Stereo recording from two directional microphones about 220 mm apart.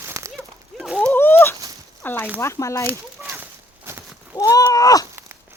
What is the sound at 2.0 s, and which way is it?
Speech, 10° left (ahead or behind).